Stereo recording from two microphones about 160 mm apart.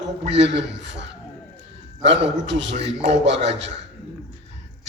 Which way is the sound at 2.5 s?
90° right.